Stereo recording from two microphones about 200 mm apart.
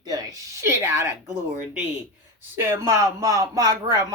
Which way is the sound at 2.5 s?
15° right (ahead or behind).